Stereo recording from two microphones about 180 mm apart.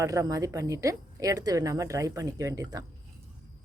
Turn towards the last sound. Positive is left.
turn(degrees=-20)  # may be behind; listen again after turning